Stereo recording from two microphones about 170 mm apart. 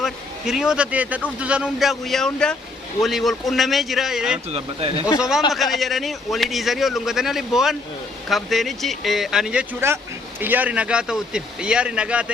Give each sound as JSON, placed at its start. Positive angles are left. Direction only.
{"t": 0.0, "sound": "a man's voice", "side_deg": -5}
{"t": 4.5, "sound": "speech", "side_deg": -35}
{"t": 5.5, "sound": "a man's voice", "side_deg": 0}